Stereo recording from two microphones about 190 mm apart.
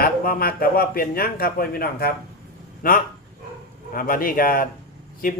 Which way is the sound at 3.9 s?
50° left (ahead or behind).